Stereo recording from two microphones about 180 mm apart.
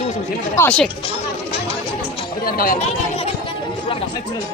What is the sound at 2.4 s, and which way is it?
Speech, 55° left (ahead or behind).